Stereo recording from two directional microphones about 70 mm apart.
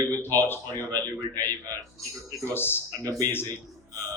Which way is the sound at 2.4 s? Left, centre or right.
Left.